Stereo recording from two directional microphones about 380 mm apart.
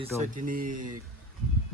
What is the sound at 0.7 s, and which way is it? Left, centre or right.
Speech, right.